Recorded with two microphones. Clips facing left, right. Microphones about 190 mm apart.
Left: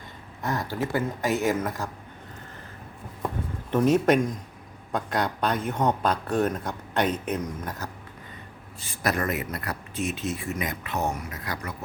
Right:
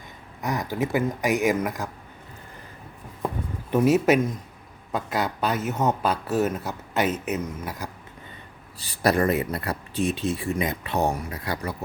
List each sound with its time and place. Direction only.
0.4 s speech: 15° right (ahead or behind)
3.2 s a sound: 10° right (ahead or behind)
4.9 s speech: 5° right (ahead or behind)
8.8 s speech: 35° right (ahead or behind)